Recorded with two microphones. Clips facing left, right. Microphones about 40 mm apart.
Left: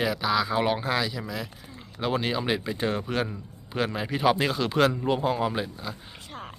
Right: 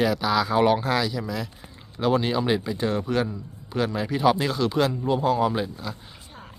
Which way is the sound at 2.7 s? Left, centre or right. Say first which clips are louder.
Right 3 dB; left.